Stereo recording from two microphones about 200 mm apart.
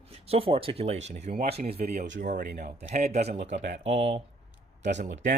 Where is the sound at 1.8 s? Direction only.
35° right (ahead or behind).